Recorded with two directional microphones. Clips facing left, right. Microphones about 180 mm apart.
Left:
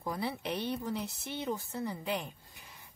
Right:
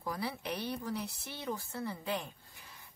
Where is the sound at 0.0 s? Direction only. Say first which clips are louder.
Left 2 dB; 20° left (ahead or behind).